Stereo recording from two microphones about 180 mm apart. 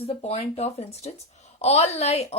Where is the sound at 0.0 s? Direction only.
35° left (ahead or behind).